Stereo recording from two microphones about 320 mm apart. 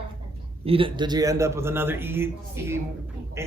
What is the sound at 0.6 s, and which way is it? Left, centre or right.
Speech, centre.